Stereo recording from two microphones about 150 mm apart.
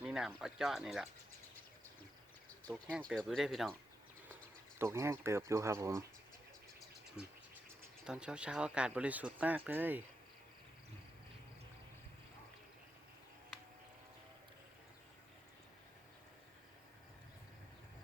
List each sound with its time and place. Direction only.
0.0 s speech: 5° right (ahead or behind)
3.1 s speech: centre (ahead or behind)
4.8 s speech: 15° right (ahead or behind)
7.2 s speech: 5° right (ahead or behind)